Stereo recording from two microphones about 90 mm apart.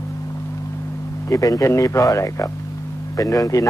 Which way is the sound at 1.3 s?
40° left (ahead or behind).